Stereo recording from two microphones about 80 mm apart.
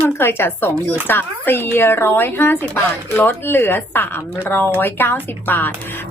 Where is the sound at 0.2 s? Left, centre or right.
Left.